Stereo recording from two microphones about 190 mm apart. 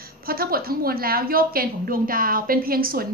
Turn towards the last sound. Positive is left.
turn(degrees=-50)  # may be behind; listen again after turning